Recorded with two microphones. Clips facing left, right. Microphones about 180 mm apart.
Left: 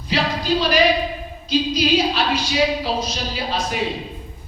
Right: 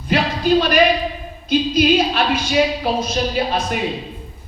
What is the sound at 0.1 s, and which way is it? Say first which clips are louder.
Music: right 3 dB; 55° right (ahead or behind).